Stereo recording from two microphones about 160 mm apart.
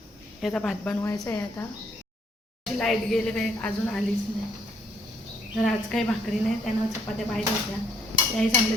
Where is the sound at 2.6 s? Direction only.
Centre (ahead or behind).